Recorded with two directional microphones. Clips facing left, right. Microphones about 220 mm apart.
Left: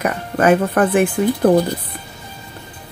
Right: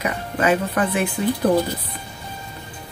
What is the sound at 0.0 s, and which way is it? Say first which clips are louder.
Speech: left 5 dB; 50° left (ahead or behind).